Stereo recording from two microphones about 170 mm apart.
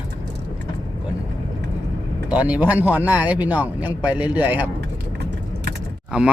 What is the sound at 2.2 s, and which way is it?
A man's voice, 10° right (ahead or behind).